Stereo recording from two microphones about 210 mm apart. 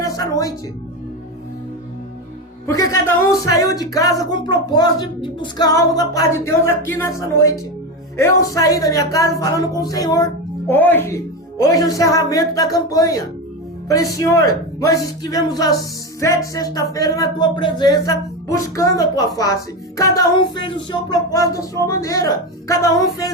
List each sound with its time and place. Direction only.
0.0 s music: 15° left (ahead or behind)
2.6 s speech: 15° left (ahead or behind)